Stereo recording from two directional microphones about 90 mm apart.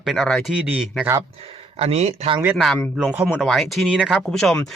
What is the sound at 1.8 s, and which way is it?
Speech, 90° right.